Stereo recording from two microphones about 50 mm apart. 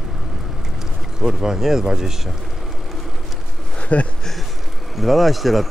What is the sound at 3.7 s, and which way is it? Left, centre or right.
Insect, left.